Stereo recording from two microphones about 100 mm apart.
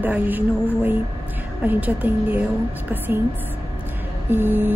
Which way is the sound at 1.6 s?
15° right (ahead or behind).